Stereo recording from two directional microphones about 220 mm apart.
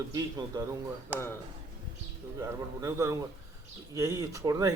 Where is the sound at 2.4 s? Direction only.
15° right (ahead or behind).